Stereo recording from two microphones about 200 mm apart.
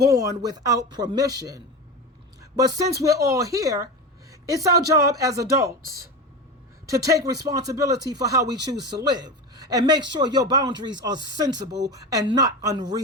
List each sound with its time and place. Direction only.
0.1 s speech: 15° right (ahead or behind)
4.3 s a sound: 15° right (ahead or behind)
4.9 s speech: 15° right (ahead or behind)